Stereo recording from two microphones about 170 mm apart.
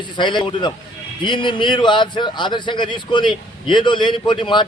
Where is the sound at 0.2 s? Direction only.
25° left (ahead or behind).